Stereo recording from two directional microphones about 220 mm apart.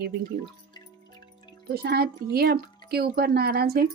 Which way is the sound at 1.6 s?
45° right (ahead or behind).